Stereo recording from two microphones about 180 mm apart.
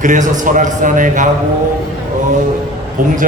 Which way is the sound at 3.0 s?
45° right (ahead or behind).